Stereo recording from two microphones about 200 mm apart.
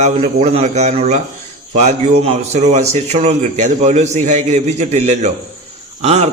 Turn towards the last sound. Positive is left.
turn(degrees=-35)  # may be behind; listen again after turning